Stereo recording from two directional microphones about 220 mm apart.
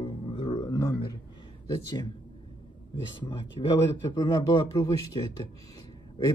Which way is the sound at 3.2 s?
20° left (ahead or behind).